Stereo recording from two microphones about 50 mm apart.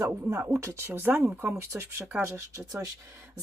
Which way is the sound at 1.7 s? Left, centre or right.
Right.